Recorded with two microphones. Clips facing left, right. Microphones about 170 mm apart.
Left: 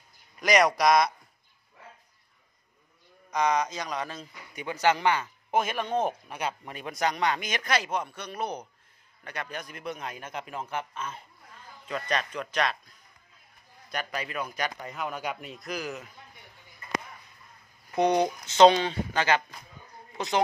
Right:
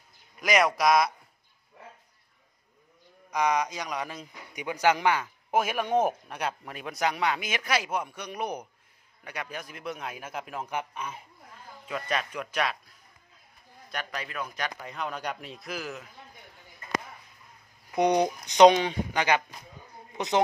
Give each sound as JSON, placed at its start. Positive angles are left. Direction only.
{"t": 0.4, "sound": "speech", "side_deg": -5}
{"t": 3.3, "sound": "a man's voice", "side_deg": -10}
{"t": 13.9, "sound": "speech", "side_deg": 0}
{"t": 17.9, "sound": "a man's voice", "side_deg": -15}
{"t": 20.1, "sound": "a sound", "side_deg": -20}